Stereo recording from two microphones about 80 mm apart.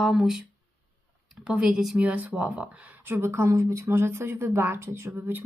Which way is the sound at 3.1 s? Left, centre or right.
Right.